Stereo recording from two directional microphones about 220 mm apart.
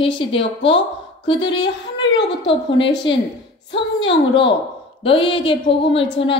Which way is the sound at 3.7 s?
25° left (ahead or behind).